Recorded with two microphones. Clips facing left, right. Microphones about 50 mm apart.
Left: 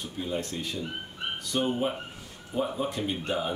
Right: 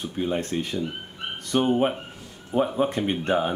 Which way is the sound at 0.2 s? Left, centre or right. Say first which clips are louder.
Right 6 dB; right.